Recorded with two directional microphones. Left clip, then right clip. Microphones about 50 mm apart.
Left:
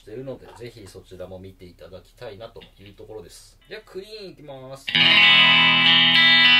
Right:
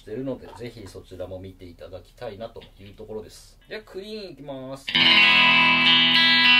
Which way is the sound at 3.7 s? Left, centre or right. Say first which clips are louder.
Right 1 dB; centre.